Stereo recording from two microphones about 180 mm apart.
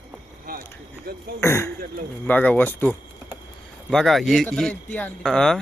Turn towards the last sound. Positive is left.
turn(degrees=5)  # may be behind; listen again after turning